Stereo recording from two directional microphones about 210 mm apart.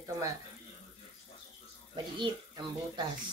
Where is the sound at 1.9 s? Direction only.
20° right (ahead or behind).